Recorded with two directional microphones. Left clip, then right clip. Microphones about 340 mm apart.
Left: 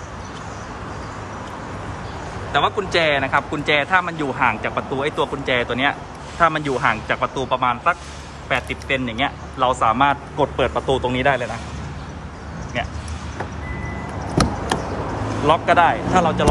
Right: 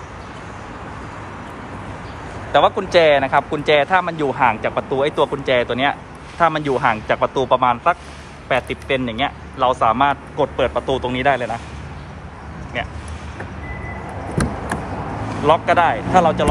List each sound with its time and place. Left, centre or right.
2.5 s a man's voice: centre
12.7 s a man's voice: centre
15.4 s a man's voice: centre